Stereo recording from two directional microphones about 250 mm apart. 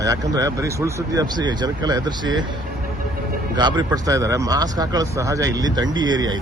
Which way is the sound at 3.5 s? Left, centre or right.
Centre.